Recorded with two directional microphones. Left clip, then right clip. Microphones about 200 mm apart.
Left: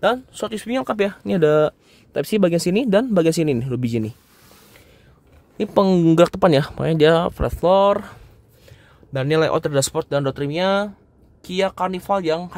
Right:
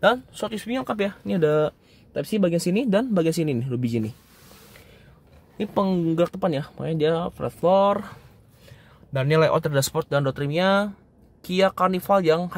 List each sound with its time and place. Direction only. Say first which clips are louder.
0.0 s speech: left 1 dB; 15° left (ahead or behind)
2.1 s speech: left 5 dB; 35° left (ahead or behind)
5.6 s speech: left 7 dB; 25° left (ahead or behind); by 12.5 s centre (ahead or behind)